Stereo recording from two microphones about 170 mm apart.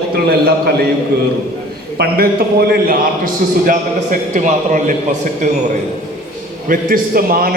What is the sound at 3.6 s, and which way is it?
A man's voice, 45° right (ahead or behind).